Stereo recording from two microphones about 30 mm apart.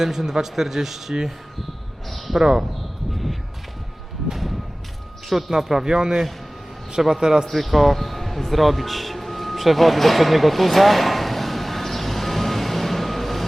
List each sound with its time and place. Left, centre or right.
0.0 s speech: centre
2.0 s a sound: centre
2.4 s speech: centre
5.3 s a man's voice: centre
7.5 s music: centre